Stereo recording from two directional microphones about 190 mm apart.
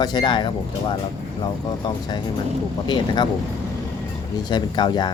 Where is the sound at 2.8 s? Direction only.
25° left (ahead or behind).